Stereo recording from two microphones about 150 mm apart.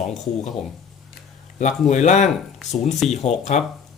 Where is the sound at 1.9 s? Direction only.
55° left (ahead or behind).